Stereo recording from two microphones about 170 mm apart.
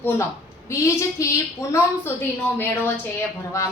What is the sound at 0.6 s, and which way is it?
A woman's voice, 15° left (ahead or behind).